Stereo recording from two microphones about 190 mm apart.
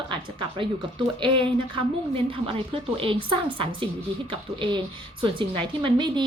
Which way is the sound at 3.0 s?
25° right (ahead or behind).